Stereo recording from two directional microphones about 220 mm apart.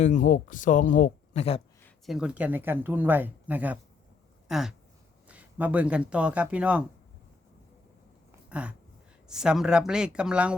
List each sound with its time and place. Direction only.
0.0 s speech: 35° left (ahead or behind)
1.8 s speech: centre (ahead or behind)
8.3 s a sound: 5° right (ahead or behind)
9.2 s speech: 5° right (ahead or behind)